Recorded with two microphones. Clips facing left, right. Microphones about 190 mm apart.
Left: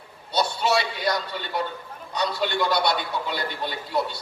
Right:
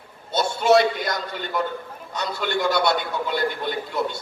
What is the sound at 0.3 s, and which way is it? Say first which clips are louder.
A man's voice: right 5 dB; 50° right (ahead or behind).